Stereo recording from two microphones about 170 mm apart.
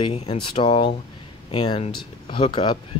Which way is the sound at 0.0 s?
30° left (ahead or behind).